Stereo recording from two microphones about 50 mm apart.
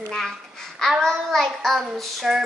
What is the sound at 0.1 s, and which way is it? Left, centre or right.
Babbling, centre.